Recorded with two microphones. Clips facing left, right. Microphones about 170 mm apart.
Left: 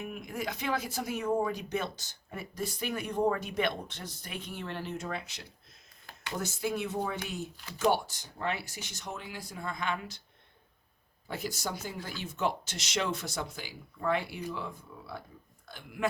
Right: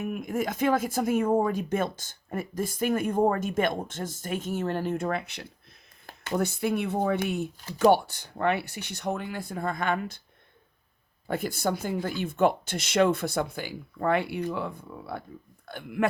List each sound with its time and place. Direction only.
0.0 s speech: 50° right (ahead or behind)
11.3 s speech: 55° right (ahead or behind)